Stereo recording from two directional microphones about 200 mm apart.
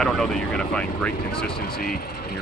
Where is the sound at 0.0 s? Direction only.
Centre (ahead or behind).